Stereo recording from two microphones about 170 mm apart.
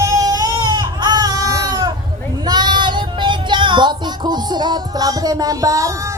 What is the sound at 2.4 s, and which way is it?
Child singing, 25° right (ahead or behind).